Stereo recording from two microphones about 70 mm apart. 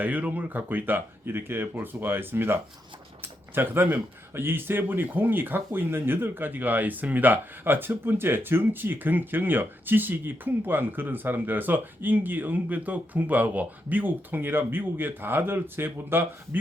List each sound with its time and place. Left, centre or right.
0.0 s a man's voice: right